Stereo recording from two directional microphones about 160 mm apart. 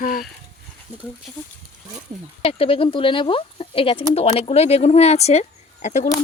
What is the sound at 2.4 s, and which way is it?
Speech, 35° left (ahead or behind).